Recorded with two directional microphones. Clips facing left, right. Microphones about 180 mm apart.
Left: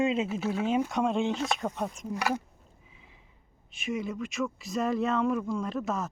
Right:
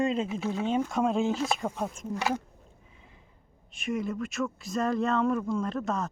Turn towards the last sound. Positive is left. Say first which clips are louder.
# right 1 dB
turn(degrees=5)  # may be behind; listen again after turning